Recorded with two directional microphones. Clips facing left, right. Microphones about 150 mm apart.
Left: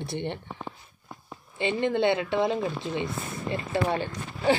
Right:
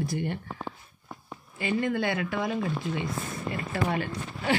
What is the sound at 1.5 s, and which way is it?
Speech, 25° left (ahead or behind).